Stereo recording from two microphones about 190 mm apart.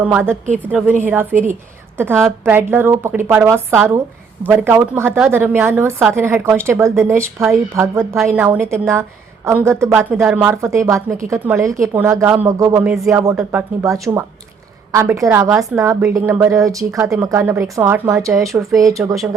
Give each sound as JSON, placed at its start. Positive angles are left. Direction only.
{"t": 0.0, "sound": "a woman's voice", "side_deg": -10}